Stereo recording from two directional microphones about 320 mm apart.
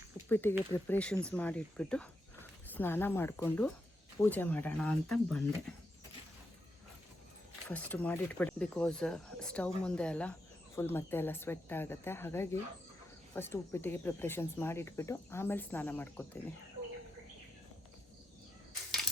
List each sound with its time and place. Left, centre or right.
0.3 s speech: centre
7.7 s speech: centre
18.9 s a sound: centre